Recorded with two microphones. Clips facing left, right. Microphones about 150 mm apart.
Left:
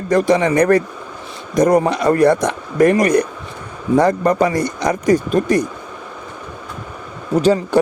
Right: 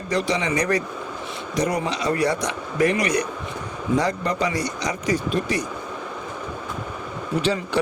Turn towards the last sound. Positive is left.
turn(degrees=45)  # may be behind; listen again after turning